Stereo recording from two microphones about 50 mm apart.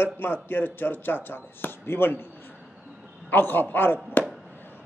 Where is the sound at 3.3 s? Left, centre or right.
Left.